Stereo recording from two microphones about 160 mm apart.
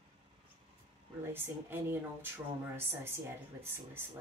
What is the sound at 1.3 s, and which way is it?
Speech, 15° right (ahead or behind).